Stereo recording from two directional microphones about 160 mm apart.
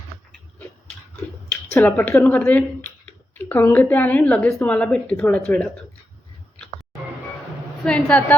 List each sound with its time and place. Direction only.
1.1 s speech: 10° left (ahead or behind)
7.9 s speech: 5° left (ahead or behind)